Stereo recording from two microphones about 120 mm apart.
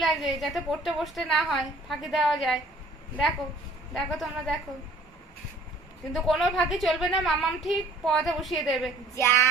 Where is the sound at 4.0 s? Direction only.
Centre (ahead or behind).